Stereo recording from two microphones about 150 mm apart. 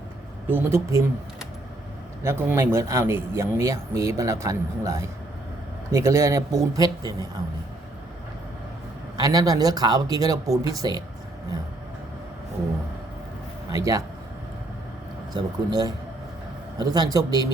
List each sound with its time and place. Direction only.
0.5 s speech: 20° right (ahead or behind)
2.2 s speech: 15° right (ahead or behind)
9.1 s speech: 25° right (ahead or behind)
13.7 s speech: 25° right (ahead or behind)
15.3 s speech: 30° right (ahead or behind)